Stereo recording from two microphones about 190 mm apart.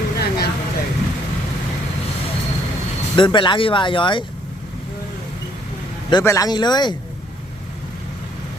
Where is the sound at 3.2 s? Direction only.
25° left (ahead or behind).